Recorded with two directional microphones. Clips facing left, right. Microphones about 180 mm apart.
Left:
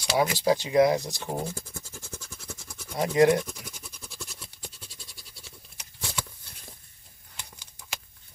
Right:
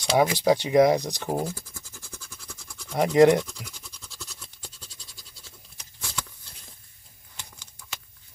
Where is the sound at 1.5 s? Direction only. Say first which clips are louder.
Left 1 dB; 25° left (ahead or behind).